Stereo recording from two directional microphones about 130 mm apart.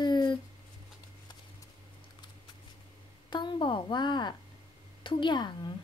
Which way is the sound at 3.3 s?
35° left (ahead or behind).